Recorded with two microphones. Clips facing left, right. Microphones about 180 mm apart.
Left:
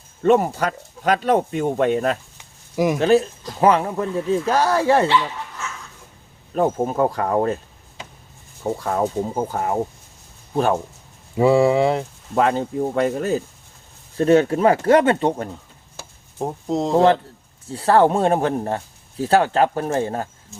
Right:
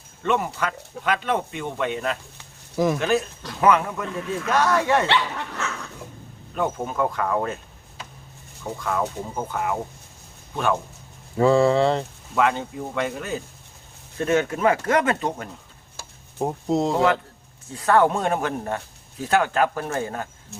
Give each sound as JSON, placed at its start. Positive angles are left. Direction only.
{"t": 0.2, "sound": "speech", "side_deg": 40}
{"t": 2.4, "sound": "a sound", "side_deg": 15}
{"t": 3.0, "sound": "speech", "side_deg": 30}
{"t": 5.0, "sound": "dog", "side_deg": -70}
{"t": 6.5, "sound": "speech", "side_deg": 35}
{"t": 8.6, "sound": "speech", "side_deg": 35}
{"t": 11.3, "sound": "speech", "side_deg": 10}
{"t": 12.3, "sound": "speech", "side_deg": 35}
{"t": 16.4, "sound": "speech", "side_deg": 0}
{"t": 17.7, "sound": "speech", "side_deg": 30}
{"t": 20.5, "sound": "speech", "side_deg": -65}